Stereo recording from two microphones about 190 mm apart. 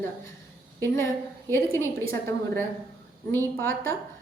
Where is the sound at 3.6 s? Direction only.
10° left (ahead or behind).